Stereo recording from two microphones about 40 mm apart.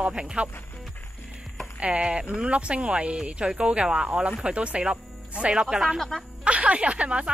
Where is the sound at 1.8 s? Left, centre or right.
Right.